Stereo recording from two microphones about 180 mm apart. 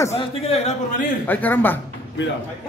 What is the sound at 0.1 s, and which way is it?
Speech, 40° left (ahead or behind).